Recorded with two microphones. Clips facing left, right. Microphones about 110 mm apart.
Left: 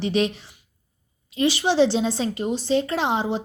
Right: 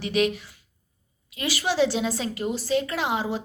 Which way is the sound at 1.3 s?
25° left (ahead or behind).